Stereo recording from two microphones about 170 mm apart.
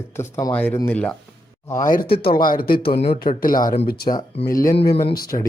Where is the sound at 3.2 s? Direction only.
55° left (ahead or behind).